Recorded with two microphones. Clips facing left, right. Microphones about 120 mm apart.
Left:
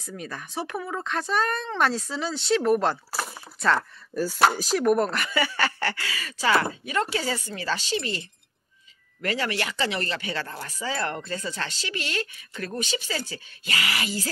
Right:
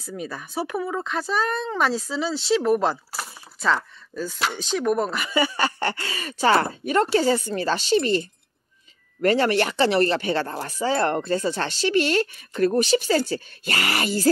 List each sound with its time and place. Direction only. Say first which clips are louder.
0.0 s speech: right 4 dB; 10° right (ahead or behind)
4.1 s speech: left 6 dB; 10° left (ahead or behind)
5.2 s a sound: right 3 dB; 15° right (ahead or behind)
6.4 s speech: right 4 dB; 40° right (ahead or behind)
9.2 s speech: right 9 dB; 40° right (ahead or behind)
10.3 s speech: right 7 dB; 35° right (ahead or behind)
12.0 s speech: right 7 dB; 45° right (ahead or behind)